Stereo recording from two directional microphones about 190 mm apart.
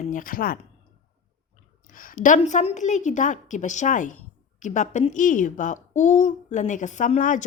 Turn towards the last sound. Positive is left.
turn(degrees=40)  # may be behind; listen again after turning